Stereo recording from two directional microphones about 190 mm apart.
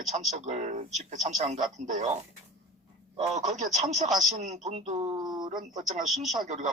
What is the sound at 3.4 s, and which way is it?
Speech, 40° right (ahead or behind).